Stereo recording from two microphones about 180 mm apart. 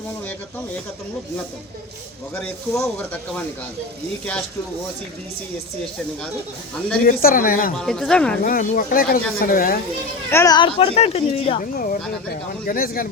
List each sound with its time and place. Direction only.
2.3 s speech: 10° left (ahead or behind)
7.0 s speech: 55° left (ahead or behind)
7.8 s speech: centre (ahead or behind)
8.4 s speech: 50° left (ahead or behind)
10.3 s speech: 20° left (ahead or behind)
11.6 s speech: 50° left (ahead or behind)